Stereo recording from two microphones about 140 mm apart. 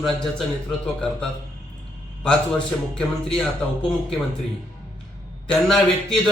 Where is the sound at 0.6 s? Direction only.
5° left (ahead or behind).